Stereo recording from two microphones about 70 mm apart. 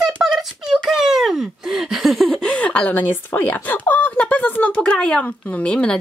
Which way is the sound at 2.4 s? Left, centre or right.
Centre.